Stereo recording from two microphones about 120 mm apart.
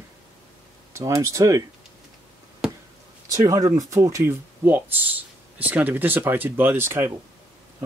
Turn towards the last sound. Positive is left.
turn(degrees=-20)  # may be behind; listen again after turning